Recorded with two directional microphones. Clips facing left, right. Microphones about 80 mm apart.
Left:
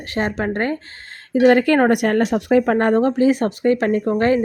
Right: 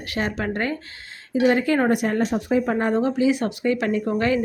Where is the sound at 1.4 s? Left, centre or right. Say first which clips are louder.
Left 6 dB; left.